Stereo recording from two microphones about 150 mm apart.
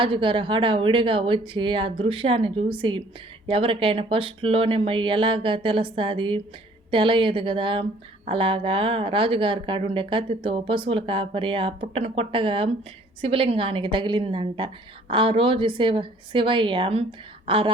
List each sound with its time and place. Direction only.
0.0 s speech: 35° right (ahead or behind)